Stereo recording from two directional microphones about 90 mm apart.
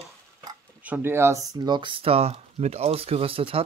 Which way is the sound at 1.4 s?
45° right (ahead or behind).